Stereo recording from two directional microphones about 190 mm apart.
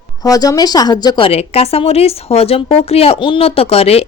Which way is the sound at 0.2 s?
20° left (ahead or behind).